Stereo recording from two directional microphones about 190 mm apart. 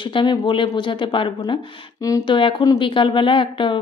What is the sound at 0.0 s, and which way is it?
Speech, 25° left (ahead or behind).